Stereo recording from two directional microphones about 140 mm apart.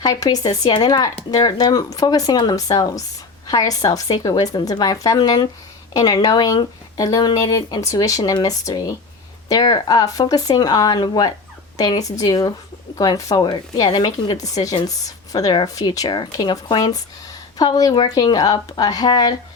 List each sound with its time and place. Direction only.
0.0 s speech: 25° left (ahead or behind)